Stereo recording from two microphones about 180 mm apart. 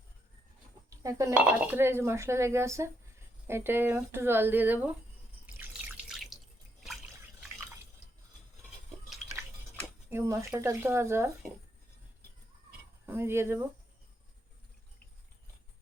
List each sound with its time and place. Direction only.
1.0 s speech: 15° right (ahead or behind)
6.1 s water: centre (ahead or behind)
10.1 s speech: 15° right (ahead or behind)
13.1 s speech: 15° right (ahead or behind)